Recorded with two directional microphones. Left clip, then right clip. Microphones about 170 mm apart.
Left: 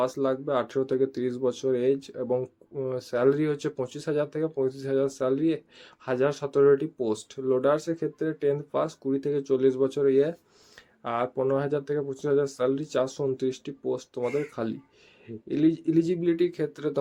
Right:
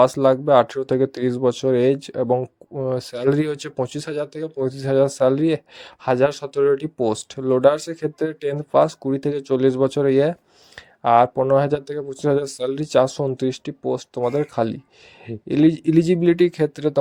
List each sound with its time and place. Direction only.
0.0 s speech: 50° right (ahead or behind)